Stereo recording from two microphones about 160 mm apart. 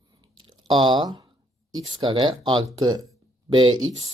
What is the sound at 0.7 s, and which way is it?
Speech, 30° right (ahead or behind).